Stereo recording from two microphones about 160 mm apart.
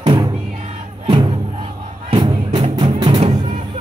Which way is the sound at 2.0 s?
30° right (ahead or behind).